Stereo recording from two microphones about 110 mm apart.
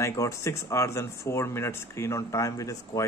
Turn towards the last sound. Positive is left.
turn(degrees=30)  # may be behind; listen again after turning